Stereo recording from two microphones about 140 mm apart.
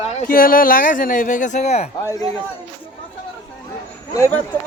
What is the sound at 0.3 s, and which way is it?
Speech, 90° left.